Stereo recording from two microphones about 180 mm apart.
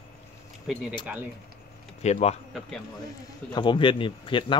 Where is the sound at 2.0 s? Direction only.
35° left (ahead or behind).